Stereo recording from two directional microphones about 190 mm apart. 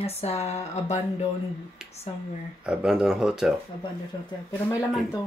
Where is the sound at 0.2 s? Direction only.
35° left (ahead or behind).